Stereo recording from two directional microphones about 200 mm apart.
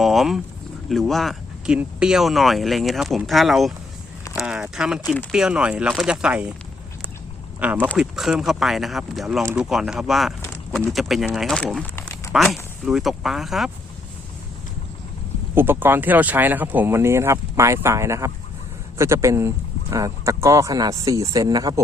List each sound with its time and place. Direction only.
0.0 s speech: centre (ahead or behind)
7.6 s speech: 5° right (ahead or behind); by 12.3 s 10° left (ahead or behind)
12.3 s speech: 5° right (ahead or behind)
15.5 s speech: 10° right (ahead or behind)